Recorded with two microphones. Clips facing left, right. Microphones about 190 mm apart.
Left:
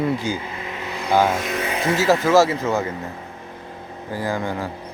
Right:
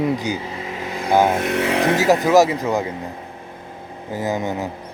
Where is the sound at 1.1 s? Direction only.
20° right (ahead or behind).